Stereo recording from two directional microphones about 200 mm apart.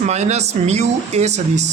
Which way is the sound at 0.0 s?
35° right (ahead or behind).